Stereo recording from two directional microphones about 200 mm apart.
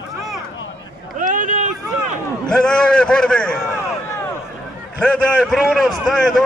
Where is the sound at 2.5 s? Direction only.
5° left (ahead or behind).